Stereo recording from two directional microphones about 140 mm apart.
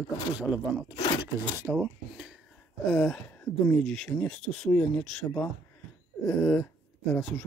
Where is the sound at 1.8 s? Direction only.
5° right (ahead or behind).